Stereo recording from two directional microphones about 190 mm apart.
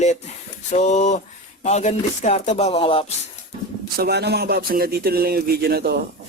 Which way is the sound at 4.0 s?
60° right (ahead or behind).